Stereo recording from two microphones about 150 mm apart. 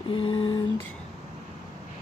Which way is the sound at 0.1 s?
35° left (ahead or behind).